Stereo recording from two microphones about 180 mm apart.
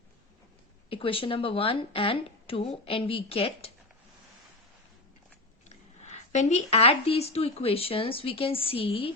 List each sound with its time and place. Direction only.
0.9 s speech: 30° left (ahead or behind)
5.6 s speech: 40° left (ahead or behind)